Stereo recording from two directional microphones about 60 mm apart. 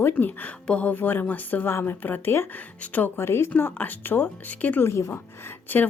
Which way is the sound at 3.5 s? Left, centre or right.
Left.